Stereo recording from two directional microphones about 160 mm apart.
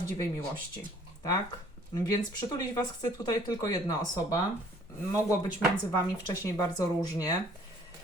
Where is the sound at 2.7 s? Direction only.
20° left (ahead or behind).